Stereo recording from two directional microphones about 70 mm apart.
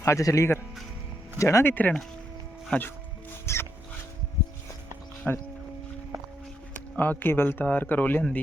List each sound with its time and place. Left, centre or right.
0.0 s speech: left
1.7 s speech: left
3.4 s mouse: left
5.2 s speech: centre
6.9 s speech: left